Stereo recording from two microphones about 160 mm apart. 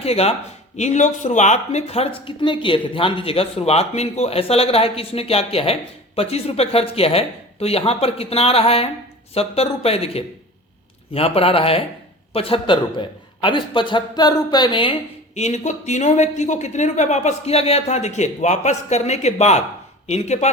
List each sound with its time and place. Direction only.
0.0 s speech: 40° left (ahead or behind)
15.4 s speech: 45° left (ahead or behind)